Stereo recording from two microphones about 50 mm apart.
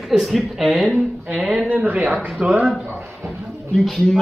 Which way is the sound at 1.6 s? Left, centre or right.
Right.